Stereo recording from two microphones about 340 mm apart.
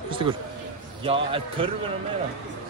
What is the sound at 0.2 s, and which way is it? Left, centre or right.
Speech, centre.